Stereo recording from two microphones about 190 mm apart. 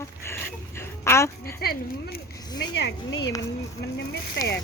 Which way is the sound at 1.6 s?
55° left (ahead or behind).